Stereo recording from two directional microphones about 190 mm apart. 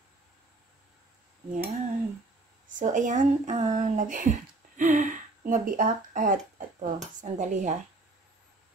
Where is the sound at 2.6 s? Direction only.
45° right (ahead or behind).